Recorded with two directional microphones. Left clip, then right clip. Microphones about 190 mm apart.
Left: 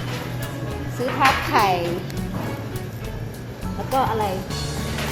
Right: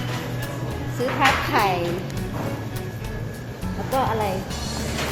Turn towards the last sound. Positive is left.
turn(degrees=0)  # may be behind; listen again after turning